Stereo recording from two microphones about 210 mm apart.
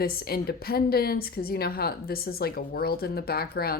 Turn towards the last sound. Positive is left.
turn(degrees=45)  # may be behind; listen again after turning